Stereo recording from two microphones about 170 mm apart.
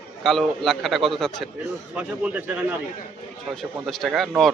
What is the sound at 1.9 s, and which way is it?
Speech, 10° right (ahead or behind).